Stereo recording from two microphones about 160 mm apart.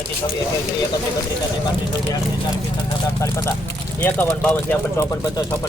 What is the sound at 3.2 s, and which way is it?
Speech, 20° left (ahead or behind).